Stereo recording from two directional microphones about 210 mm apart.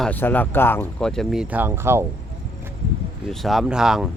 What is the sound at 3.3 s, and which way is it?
Speech, centre (ahead or behind).